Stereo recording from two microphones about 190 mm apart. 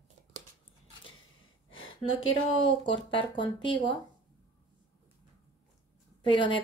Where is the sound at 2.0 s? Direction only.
90° left.